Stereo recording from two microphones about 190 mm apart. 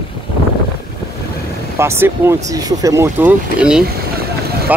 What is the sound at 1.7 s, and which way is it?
Speech, 15° right (ahead or behind).